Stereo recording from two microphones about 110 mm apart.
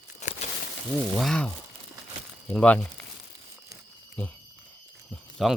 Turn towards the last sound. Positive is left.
turn(degrees=0)  # may be behind; listen again after turning